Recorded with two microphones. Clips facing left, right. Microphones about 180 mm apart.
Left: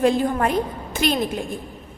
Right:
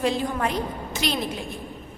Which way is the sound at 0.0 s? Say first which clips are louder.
Left 5 dB; 50° left (ahead or behind).